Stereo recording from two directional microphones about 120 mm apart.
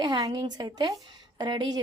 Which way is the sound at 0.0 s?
35° right (ahead or behind).